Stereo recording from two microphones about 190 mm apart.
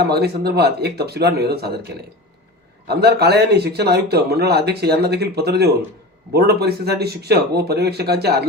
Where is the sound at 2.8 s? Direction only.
60° right (ahead or behind).